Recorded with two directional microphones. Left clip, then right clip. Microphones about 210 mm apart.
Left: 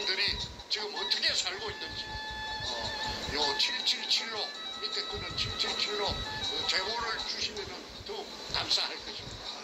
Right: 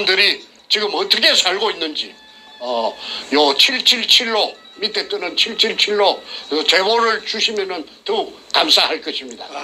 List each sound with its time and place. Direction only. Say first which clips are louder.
0.0 s speech: right 16 dB; 50° right (ahead or behind)
3.3 s speech: right 17 dB; 50° right (ahead or behind)